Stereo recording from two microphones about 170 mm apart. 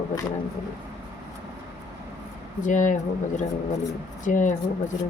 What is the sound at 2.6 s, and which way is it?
Speech, 50° left (ahead or behind).